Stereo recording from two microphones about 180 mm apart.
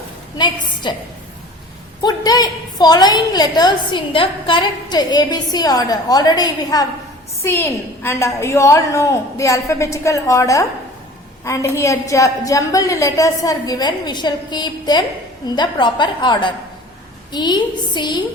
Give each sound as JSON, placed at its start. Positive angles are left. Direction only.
{"t": 0.3, "sound": "a woman's voice", "side_deg": 25}
{"t": 2.0, "sound": "a woman's voice", "side_deg": 20}